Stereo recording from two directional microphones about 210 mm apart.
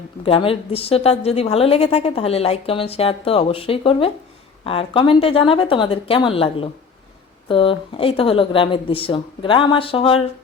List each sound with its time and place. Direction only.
0.3 s a woman's voice: 25° left (ahead or behind)